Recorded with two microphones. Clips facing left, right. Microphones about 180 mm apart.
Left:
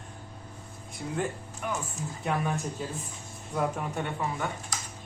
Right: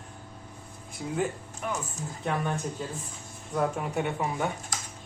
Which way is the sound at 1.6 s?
Centre (ahead or behind).